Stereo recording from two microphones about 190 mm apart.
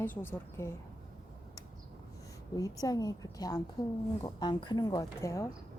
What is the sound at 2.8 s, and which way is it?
A woman's voice, 20° left (ahead or behind).